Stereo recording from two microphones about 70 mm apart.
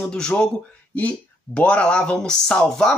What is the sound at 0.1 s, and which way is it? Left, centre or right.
Speech, centre.